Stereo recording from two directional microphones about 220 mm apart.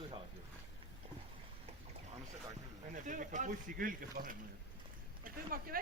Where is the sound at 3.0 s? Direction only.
35° right (ahead or behind).